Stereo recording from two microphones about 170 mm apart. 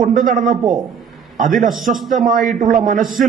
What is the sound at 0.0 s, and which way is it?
Speech, 55° right (ahead or behind).